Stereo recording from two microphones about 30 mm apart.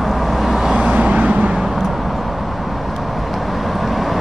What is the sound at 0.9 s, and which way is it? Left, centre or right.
Vehicle, right.